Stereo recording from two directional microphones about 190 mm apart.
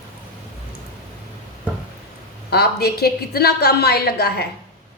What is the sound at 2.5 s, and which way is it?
A woman's voice, 55° left (ahead or behind).